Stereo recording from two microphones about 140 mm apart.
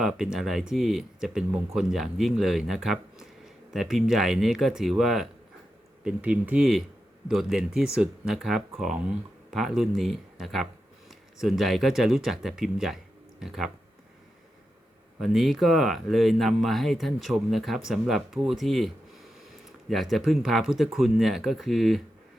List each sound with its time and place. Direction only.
0.0 s speech: 5° right (ahead or behind)
15.2 s speech: centre (ahead or behind)
19.9 s speech: centre (ahead or behind)